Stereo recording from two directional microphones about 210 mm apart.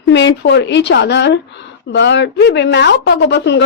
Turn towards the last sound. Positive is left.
turn(degrees=55)  # may be behind; listen again after turning